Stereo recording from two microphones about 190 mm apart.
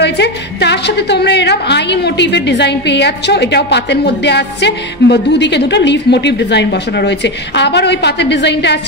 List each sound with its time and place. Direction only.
0.0 s a woman's voice: 65° left (ahead or behind)